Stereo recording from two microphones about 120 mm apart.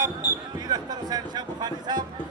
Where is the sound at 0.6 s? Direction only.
35° right (ahead or behind).